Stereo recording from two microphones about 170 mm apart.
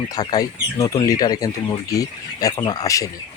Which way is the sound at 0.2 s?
20° left (ahead or behind).